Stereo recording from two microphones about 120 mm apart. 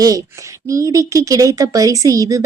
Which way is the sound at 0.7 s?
25° right (ahead or behind).